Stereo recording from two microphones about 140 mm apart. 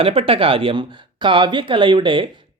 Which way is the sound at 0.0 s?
40° right (ahead or behind).